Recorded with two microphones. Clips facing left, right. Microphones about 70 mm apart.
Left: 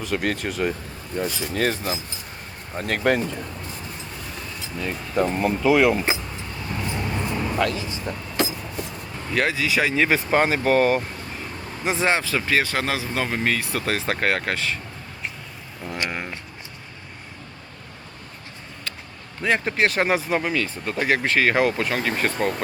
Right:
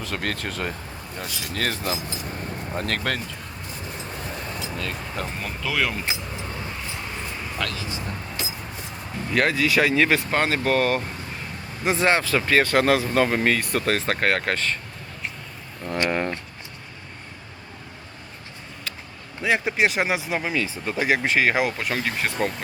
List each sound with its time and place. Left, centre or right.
0.0 s speech: centre
1.1 s speech: left
1.5 s speech: centre
4.8 s speech: centre
7.1 s vehicle: centre
7.6 s speech: left
8.4 s a sound: left
9.3 s speech: centre
15.8 s a sound: centre
19.4 s speech: centre